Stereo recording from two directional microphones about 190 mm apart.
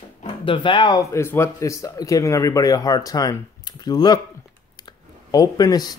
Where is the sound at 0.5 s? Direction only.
25° left (ahead or behind).